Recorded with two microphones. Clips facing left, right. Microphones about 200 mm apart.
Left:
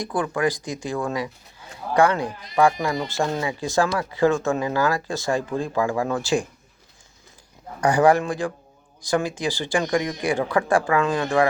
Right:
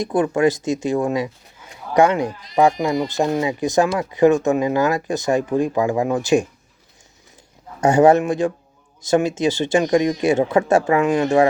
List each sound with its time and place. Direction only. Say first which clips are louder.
0.0 s speech: right 6 dB; 25° right (ahead or behind)
7.8 s speech: right 4 dB; 25° right (ahead or behind)